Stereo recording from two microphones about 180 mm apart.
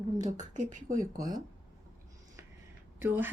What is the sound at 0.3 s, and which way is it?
Speech, 45° right (ahead or behind).